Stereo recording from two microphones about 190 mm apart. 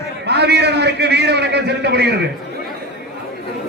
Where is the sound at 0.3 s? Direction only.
60° right (ahead or behind).